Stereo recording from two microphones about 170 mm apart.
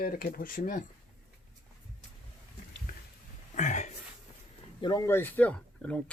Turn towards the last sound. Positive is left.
turn(degrees=5)  # may be behind; listen again after turning